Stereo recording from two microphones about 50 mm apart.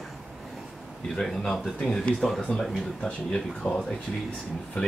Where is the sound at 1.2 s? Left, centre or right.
Centre.